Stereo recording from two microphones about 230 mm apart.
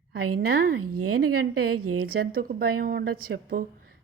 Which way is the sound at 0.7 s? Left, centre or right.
Right.